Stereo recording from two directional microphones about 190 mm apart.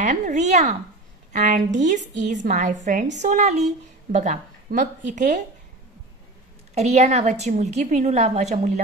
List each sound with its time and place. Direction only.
0.0 s a woman's voice: 40° right (ahead or behind)
6.7 s a woman's voice: 35° right (ahead or behind)